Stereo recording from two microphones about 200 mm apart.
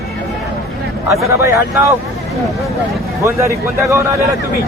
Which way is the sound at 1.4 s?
15° right (ahead or behind).